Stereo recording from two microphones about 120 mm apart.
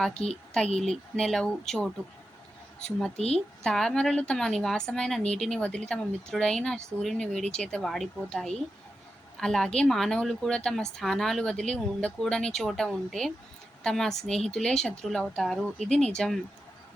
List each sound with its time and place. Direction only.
0.1 s speech: 60° left (ahead or behind)
0.8 s speech: 5° left (ahead or behind)
3.3 s speech: 5° left (ahead or behind)